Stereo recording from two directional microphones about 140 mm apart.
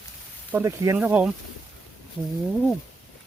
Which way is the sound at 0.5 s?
20° right (ahead or behind).